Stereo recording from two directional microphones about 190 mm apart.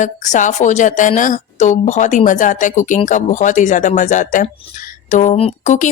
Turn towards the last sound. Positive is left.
turn(degrees=40)  # may be behind; listen again after turning